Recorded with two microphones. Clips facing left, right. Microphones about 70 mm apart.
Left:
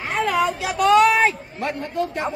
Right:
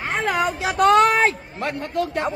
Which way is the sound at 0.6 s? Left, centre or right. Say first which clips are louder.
Right 1 dB; right.